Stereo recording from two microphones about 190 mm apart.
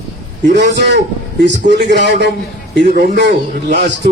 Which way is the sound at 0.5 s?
65° right (ahead or behind).